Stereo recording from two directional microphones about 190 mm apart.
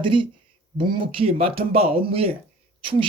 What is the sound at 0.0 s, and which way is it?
A man's voice, 25° right (ahead or behind).